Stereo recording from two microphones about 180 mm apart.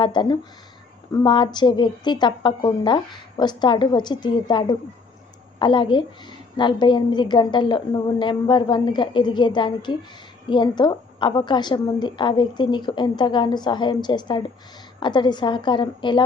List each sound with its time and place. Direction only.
0.0 s a woman's voice: 25° left (ahead or behind)